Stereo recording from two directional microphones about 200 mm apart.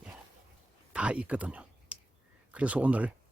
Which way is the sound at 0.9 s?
5° right (ahead or behind).